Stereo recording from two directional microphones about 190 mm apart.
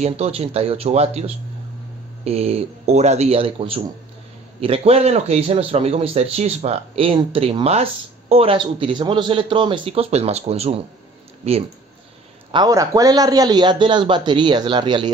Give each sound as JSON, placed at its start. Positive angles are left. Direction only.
{"t": 0.0, "sound": "a man's voice", "side_deg": -35}
{"t": 12.4, "sound": "a man's voice", "side_deg": -20}